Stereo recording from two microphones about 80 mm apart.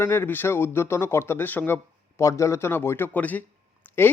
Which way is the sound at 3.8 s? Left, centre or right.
Left.